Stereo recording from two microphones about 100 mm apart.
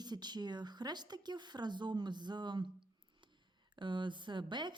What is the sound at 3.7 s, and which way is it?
A woman's voice, 50° right (ahead or behind).